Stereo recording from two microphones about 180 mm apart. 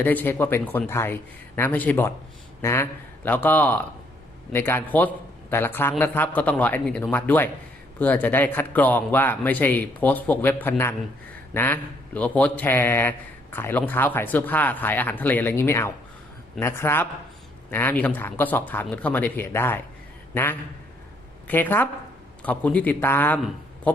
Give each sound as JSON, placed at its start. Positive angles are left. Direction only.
{"t": 0.0, "sound": "a man's voice", "side_deg": 10}